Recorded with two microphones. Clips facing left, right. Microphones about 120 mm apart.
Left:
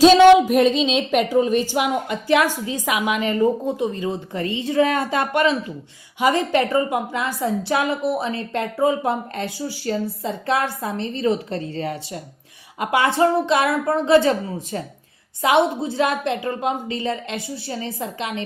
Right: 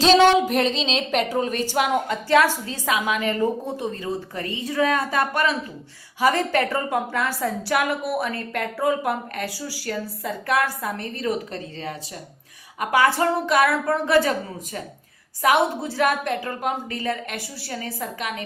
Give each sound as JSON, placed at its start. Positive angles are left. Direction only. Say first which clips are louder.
{"t": 0.0, "sound": "a woman's voice", "louder": "left 5 dB", "side_deg": 10}